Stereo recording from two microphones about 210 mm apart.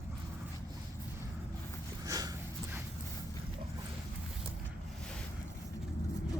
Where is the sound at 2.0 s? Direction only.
15° right (ahead or behind).